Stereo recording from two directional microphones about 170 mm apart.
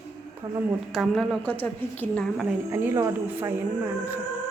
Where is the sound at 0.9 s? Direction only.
Centre (ahead or behind).